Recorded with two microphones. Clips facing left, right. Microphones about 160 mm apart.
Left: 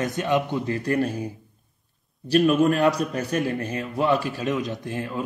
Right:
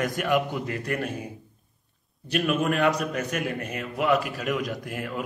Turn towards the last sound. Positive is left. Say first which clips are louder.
# left 2 dB
turn(degrees=30)  # may be behind; listen again after turning